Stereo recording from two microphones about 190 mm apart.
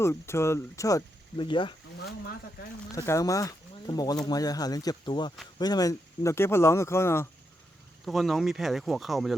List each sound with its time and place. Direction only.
0.0 s speech: 15° left (ahead or behind)
2.9 s speech: 15° left (ahead or behind)
8.0 s speech: centre (ahead or behind)